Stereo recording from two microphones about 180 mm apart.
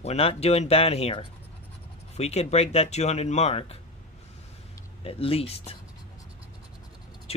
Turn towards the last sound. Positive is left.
turn(degrees=35)  # may be behind; listen again after turning